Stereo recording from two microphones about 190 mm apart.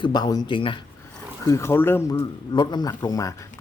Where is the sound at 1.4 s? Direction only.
15° left (ahead or behind).